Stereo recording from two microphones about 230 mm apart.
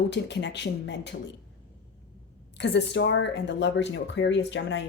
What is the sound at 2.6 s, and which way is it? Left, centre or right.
Speech, left.